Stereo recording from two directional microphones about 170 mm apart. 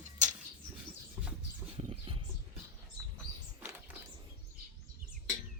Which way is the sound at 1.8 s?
30° right (ahead or behind).